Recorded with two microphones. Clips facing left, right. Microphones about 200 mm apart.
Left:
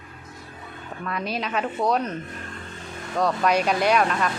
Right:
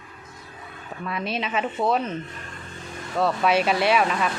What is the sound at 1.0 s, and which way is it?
Speech, centre (ahead or behind).